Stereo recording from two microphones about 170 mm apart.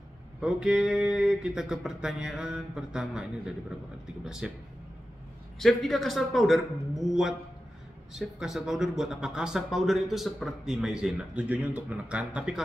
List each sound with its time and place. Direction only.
0.4 s speech: 5° right (ahead or behind)
5.6 s speech: centre (ahead or behind)